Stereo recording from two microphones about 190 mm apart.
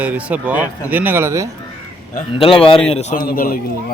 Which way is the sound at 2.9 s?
35° left (ahead or behind).